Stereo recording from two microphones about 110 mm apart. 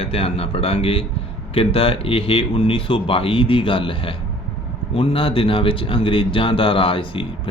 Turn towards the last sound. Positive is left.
turn(degrees=50)  # may be behind; listen again after turning